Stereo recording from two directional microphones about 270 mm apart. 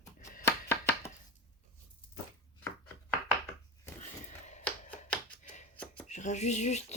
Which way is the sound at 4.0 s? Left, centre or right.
Left.